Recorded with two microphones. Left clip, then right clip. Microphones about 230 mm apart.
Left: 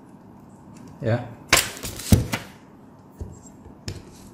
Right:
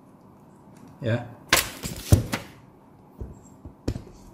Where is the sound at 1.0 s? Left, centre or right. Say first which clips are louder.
Left 3 dB; centre.